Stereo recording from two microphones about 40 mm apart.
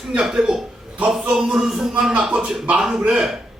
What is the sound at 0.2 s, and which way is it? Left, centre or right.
A man's voice, centre.